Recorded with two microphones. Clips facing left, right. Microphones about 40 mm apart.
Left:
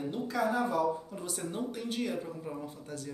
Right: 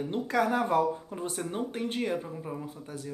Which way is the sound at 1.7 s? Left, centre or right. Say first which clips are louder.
Right 4 dB; right.